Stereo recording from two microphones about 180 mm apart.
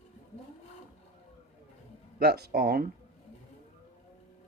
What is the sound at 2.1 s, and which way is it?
Speech, 60° right (ahead or behind).